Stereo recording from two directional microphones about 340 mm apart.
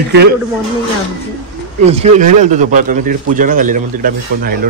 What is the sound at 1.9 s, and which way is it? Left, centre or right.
A man's voice, centre.